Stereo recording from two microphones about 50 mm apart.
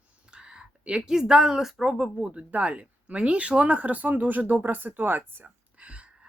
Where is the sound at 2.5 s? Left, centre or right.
Right.